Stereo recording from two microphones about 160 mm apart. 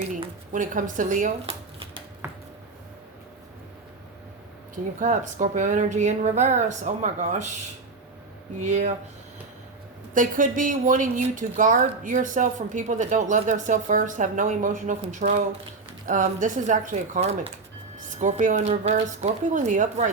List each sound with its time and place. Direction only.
0.5 s a woman's voice: 55° right (ahead or behind)
4.7 s a woman's voice: 55° right (ahead or behind)
10.2 s a woman's voice: 55° right (ahead or behind)